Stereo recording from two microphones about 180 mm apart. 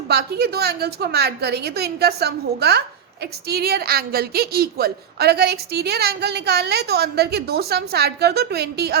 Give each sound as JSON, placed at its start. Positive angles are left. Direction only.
{"t": 0.1, "sound": "a woman's voice", "side_deg": -60}